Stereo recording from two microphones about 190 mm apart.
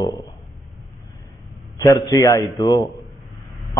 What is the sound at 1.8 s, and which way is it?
A man's voice, 20° left (ahead or behind).